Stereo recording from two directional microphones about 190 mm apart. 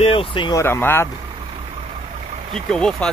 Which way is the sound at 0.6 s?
10° left (ahead or behind).